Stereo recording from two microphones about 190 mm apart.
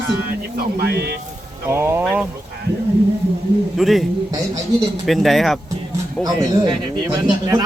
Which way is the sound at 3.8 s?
Centre (ahead or behind).